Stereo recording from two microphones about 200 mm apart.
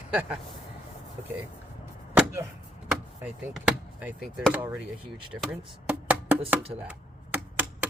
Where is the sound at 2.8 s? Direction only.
5° right (ahead or behind).